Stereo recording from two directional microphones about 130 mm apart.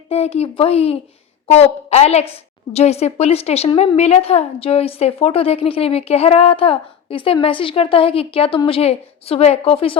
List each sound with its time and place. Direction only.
0.1 s a woman's voice: 55° left (ahead or behind)